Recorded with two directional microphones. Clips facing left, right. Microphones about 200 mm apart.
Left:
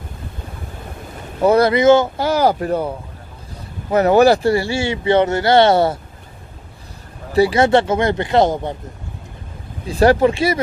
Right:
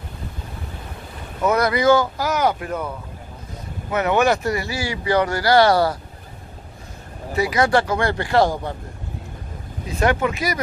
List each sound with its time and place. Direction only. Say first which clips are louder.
1.4 s speech: left 6 dB; 30° left (ahead or behind)
3.9 s speech: left 7 dB; 35° left (ahead or behind)
7.3 s speech: left 5 dB; 30° left (ahead or behind)
9.8 s speech: left 7 dB; 35° left (ahead or behind)